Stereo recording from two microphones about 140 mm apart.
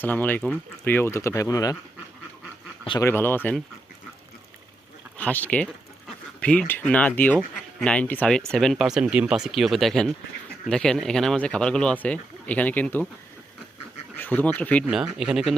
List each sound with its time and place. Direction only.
0.0 s speech: 15° left (ahead or behind)
3.0 s speech: 15° left (ahead or behind)
5.1 s speech: 10° left (ahead or behind)
14.2 s speech: 15° left (ahead or behind)
14.8 s speech: 5° right (ahead or behind)